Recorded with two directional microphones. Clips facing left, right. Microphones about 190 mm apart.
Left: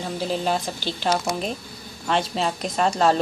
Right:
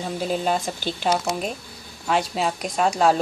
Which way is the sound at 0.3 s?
5° right (ahead or behind).